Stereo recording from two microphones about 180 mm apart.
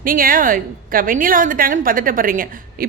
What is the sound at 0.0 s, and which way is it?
A woman's voice, 50° right (ahead or behind).